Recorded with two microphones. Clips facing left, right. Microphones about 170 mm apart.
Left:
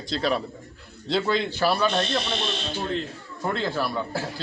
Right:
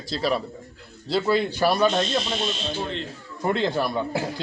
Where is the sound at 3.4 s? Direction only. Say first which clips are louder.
Right 3 dB; 15° right (ahead or behind).